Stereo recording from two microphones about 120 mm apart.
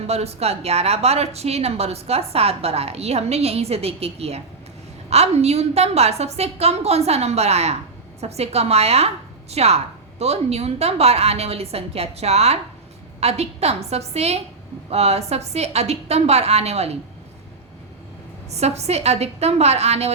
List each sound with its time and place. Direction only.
0.1 s a woman's voice: 60° right (ahead or behind)
18.5 s a woman's voice: 65° right (ahead or behind)